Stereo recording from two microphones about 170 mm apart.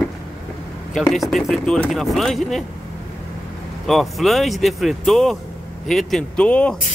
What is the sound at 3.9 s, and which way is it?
Speech, centre (ahead or behind).